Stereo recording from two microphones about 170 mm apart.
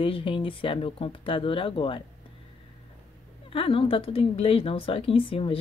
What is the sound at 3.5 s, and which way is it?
Speech, 30° left (ahead or behind).